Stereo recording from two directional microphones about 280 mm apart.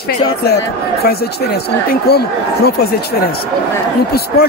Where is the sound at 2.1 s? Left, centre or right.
Left.